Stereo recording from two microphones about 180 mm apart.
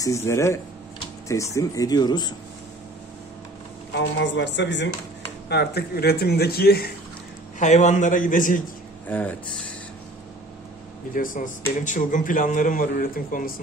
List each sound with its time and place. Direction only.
0.0 s speech: 15° left (ahead or behind)
3.9 s speech: 80° left
5.5 s speech: 65° left (ahead or behind)
7.5 s a man's voice: 40° left (ahead or behind)
9.0 s speech: 10° left (ahead or behind)
11.1 s a man's voice: 45° left (ahead or behind)